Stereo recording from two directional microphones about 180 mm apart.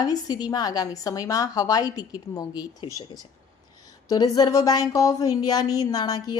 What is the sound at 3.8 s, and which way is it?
A woman's voice, 20° left (ahead or behind).